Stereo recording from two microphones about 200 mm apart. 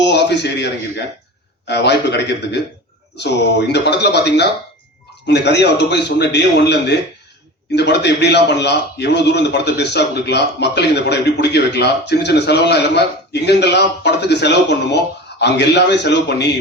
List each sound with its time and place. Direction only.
0.0 s a man's voice: 60° left (ahead or behind)